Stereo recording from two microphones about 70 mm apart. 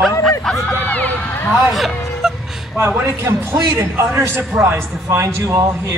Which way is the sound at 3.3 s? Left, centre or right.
Right.